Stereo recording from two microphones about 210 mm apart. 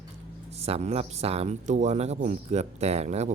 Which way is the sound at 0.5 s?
30° right (ahead or behind).